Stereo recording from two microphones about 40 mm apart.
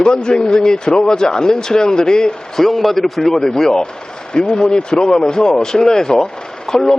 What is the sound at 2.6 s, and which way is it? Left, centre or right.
Speech, centre.